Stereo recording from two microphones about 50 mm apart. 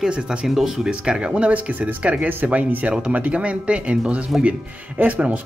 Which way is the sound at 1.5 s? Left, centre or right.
Right.